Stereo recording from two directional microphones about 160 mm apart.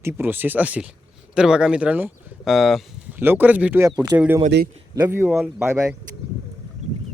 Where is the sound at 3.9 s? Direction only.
25° right (ahead or behind).